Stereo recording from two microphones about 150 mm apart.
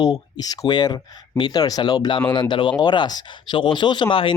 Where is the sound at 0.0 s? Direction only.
25° left (ahead or behind).